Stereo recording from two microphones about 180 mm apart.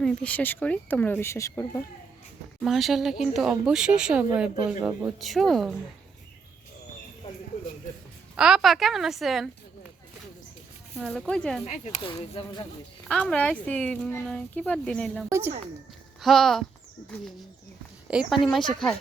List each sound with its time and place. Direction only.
0.0 s speech: 5° left (ahead or behind)
2.6 s speech: centre (ahead or behind)
8.4 s speech: 5° right (ahead or behind)
11.1 s speech: 5° left (ahead or behind)
11.6 s speech: 40° left (ahead or behind)
12.0 s speech: 25° left (ahead or behind)
13.1 s speech: 5° left (ahead or behind)
15.3 s a woman's voice: 15° right (ahead or behind)
16.2 s speech: centre (ahead or behind)